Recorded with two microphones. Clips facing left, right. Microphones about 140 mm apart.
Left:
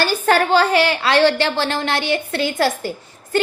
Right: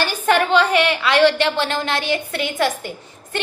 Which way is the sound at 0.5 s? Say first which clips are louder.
Left 1 dB; 35° left (ahead or behind).